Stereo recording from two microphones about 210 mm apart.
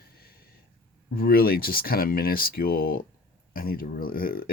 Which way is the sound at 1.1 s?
45° left (ahead or behind).